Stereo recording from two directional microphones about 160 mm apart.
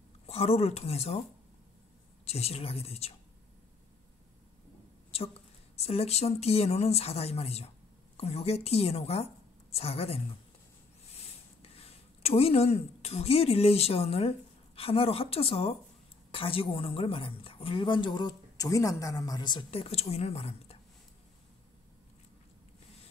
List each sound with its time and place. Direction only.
0.3 s a woman's voice: 40° left (ahead or behind)
2.2 s a woman's voice: 40° left (ahead or behind)
5.1 s a woman's voice: 40° left (ahead or behind)